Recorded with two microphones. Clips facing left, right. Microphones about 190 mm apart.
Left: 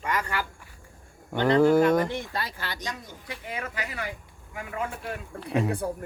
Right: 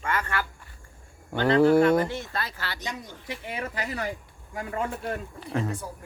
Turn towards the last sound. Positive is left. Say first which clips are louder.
# left 5 dB
turn(degrees=60)  # may be behind; listen again after turning